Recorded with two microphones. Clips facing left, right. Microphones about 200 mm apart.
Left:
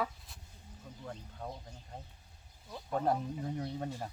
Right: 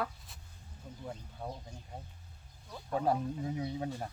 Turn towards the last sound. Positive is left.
turn(degrees=-5)  # may be behind; listen again after turning